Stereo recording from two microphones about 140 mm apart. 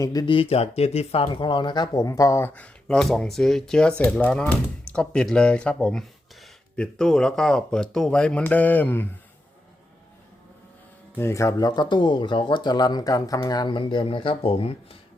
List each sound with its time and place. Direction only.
0.0 s speech: 25° left (ahead or behind)
0.3 s speech: 45° left (ahead or behind); by 9.0 s 15° left (ahead or behind)
11.2 s speech: 20° left (ahead or behind); by 14.7 s 40° left (ahead or behind)